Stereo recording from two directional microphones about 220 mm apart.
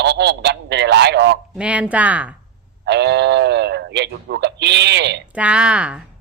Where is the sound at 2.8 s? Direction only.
50° right (ahead or behind).